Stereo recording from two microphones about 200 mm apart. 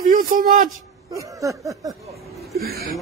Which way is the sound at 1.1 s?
15° right (ahead or behind).